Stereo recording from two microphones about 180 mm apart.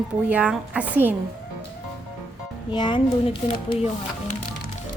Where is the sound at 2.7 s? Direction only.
25° left (ahead or behind).